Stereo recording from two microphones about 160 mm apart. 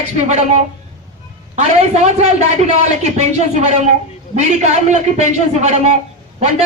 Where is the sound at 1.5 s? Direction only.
45° right (ahead or behind).